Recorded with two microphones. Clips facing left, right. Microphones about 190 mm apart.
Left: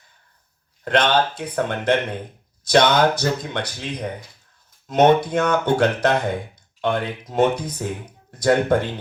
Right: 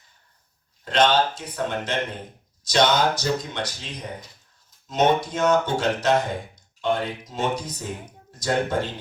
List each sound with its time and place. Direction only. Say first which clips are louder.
0.9 s speech: left 1 dB; 60° left (ahead or behind)